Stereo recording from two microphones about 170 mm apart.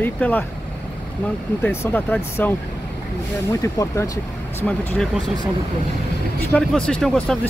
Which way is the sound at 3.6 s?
20° left (ahead or behind).